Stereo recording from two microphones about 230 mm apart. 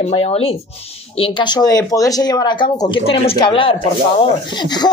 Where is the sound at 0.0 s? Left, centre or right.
Left.